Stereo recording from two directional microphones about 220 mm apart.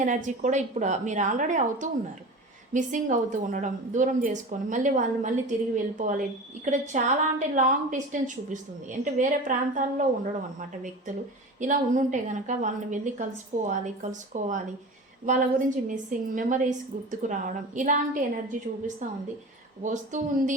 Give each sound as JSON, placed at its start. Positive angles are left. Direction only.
{"t": 0.0, "sound": "a woman's voice", "side_deg": -35}
{"t": 11.6, "sound": "a woman's voice", "side_deg": -35}